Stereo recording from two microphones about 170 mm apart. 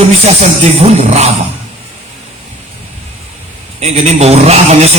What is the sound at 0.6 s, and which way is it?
Speech, 35° right (ahead or behind).